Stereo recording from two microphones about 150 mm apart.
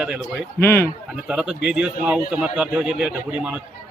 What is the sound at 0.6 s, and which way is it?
Speech, 15° left (ahead or behind).